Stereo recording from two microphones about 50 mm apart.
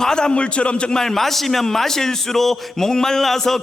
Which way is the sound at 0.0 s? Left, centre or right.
Centre.